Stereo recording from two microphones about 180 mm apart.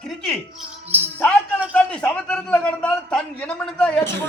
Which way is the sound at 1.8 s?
5° left (ahead or behind).